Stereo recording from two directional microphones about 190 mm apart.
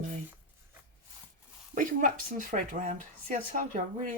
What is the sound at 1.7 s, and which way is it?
Speech, 45° right (ahead or behind).